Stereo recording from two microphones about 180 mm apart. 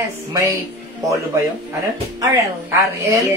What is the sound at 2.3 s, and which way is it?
Speech, 15° right (ahead or behind).